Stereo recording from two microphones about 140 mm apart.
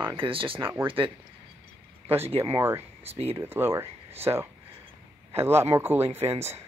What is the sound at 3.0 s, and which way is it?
Speech, 45° right (ahead or behind).